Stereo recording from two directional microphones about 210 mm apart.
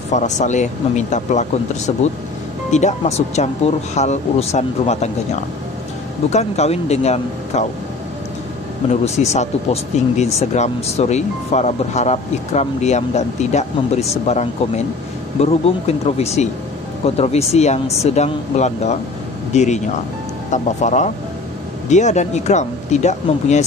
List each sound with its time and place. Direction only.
0.1 s speech: 35° left (ahead or behind)
6.3 s speech: 30° left (ahead or behind)
9.0 s speech: 30° left (ahead or behind)